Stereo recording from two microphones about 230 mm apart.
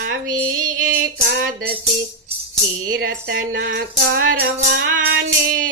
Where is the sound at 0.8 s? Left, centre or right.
Right.